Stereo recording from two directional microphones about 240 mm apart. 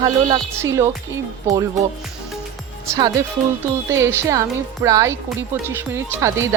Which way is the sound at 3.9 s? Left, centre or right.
Centre.